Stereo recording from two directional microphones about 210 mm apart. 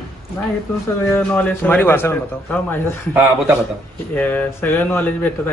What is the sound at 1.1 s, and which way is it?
Speech, 10° left (ahead or behind).